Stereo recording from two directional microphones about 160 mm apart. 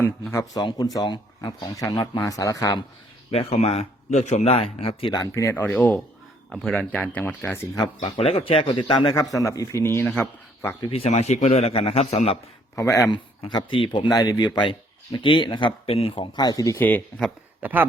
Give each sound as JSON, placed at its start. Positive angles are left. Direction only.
{"t": 0.0, "sound": "speech", "side_deg": 15}
{"t": 3.3, "sound": "speech", "side_deg": 40}
{"t": 8.0, "sound": "speech", "side_deg": 40}
{"t": 10.9, "sound": "speech", "side_deg": 40}
{"t": 12.7, "sound": "speech", "side_deg": 20}
{"t": 17.6, "sound": "speech", "side_deg": -10}